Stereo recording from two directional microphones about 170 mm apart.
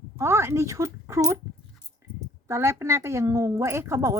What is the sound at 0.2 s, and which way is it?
Speech, 15° right (ahead or behind).